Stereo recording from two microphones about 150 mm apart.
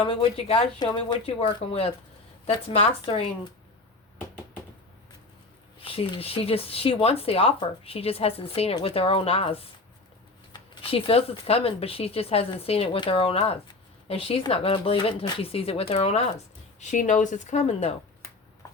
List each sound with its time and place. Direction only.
0.0 s speech: 35° left (ahead or behind)
5.8 s speech: 40° left (ahead or behind)
16.8 s speech: 55° left (ahead or behind)
18.6 s a sound: 20° left (ahead or behind)